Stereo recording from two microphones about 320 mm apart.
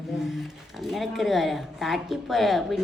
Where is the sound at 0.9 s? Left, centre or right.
Centre.